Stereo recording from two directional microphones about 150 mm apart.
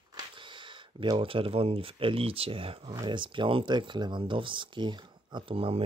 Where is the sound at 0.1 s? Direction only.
35° right (ahead or behind).